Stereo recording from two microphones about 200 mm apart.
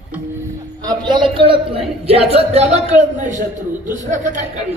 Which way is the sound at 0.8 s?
20° right (ahead or behind).